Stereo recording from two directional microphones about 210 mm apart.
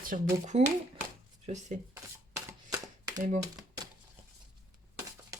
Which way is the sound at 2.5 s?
15° right (ahead or behind).